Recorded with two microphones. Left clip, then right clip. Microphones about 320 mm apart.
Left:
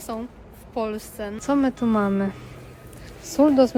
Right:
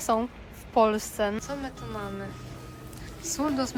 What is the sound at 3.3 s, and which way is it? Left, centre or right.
Speech, centre.